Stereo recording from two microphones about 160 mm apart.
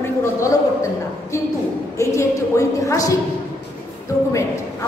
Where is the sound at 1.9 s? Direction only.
20° left (ahead or behind).